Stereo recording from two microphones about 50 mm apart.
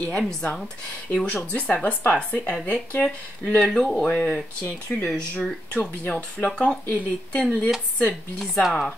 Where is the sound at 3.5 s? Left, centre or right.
Centre.